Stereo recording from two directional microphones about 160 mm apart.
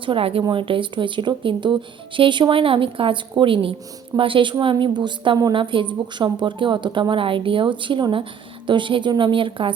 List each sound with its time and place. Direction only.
0.0 s a woman's voice: 35° right (ahead or behind)